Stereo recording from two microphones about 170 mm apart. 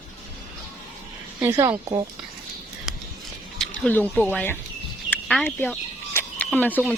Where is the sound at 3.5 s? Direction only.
5° left (ahead or behind).